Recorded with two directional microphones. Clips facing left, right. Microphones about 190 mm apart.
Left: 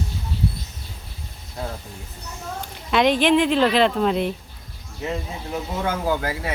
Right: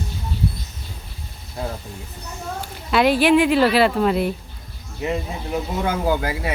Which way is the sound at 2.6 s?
5° right (ahead or behind).